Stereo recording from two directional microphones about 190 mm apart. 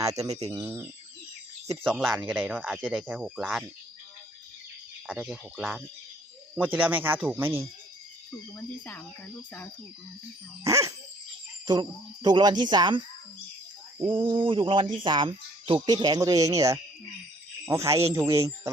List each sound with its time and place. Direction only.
0.0 s speech: 15° right (ahead or behind)
0.3 s speech: 35° right (ahead or behind)
0.5 s speech: 15° right (ahead or behind)
5.0 s speech: 5° right (ahead or behind)
6.6 s speech: 10° right (ahead or behind)
8.5 s speech: 10° left (ahead or behind)
10.6 s speech: 15° right (ahead or behind)
14.0 s speech: 25° right (ahead or behind)